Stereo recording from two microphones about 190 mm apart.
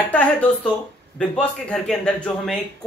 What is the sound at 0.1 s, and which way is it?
A man's voice, 5° left (ahead or behind).